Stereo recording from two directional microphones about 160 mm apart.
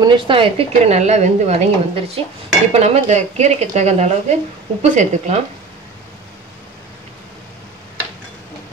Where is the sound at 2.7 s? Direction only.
45° right (ahead or behind).